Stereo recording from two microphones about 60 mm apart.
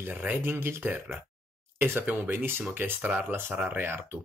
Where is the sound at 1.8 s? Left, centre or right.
Right.